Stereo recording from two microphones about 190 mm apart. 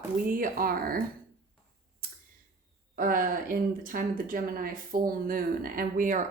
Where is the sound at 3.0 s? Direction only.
45° right (ahead or behind).